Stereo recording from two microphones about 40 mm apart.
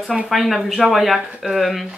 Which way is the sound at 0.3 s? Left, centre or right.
Centre.